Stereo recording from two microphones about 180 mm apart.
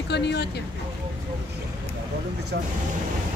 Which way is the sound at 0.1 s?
70° left (ahead or behind).